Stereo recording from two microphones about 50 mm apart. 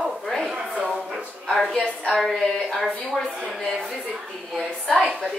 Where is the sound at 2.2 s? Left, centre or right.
Centre.